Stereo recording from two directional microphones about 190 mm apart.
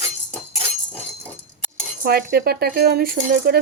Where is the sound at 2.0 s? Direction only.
55° right (ahead or behind).